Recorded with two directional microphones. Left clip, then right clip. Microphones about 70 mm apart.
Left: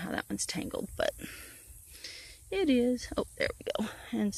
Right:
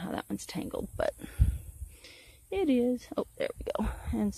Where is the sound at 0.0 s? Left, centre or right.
Right.